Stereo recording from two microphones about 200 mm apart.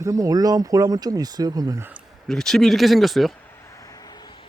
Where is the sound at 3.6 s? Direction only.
15° left (ahead or behind).